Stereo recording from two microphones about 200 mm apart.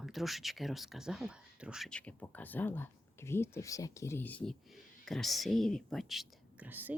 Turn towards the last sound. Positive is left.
turn(degrees=-10)  # may be behind; listen again after turning